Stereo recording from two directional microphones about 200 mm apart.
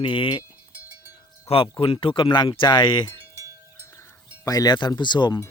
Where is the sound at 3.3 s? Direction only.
15° right (ahead or behind).